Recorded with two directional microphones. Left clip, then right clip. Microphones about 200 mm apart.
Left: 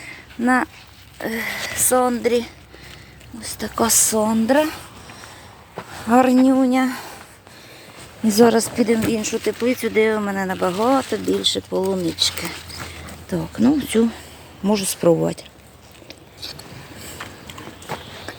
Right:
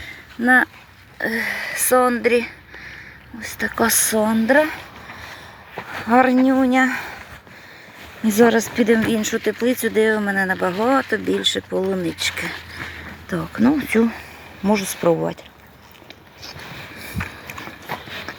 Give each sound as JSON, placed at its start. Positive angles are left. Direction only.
{"t": 0.0, "sound": "a sound", "side_deg": 0}
{"t": 1.2, "sound": "speech", "side_deg": 0}
{"t": 4.5, "sound": "speech", "side_deg": 20}
{"t": 6.1, "sound": "speech", "side_deg": 20}
{"t": 6.5, "sound": "speech", "side_deg": 5}
{"t": 8.3, "sound": "speech", "side_deg": 5}
{"t": 9.1, "sound": "speech", "side_deg": -15}
{"t": 13.6, "sound": "speech", "side_deg": 5}